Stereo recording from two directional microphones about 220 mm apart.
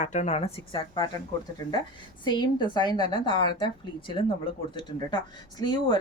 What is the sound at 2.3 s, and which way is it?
A woman's voice, 20° left (ahead or behind).